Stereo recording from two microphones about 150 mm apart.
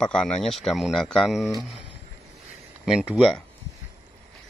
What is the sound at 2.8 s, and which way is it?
Speech, 5° right (ahead or behind).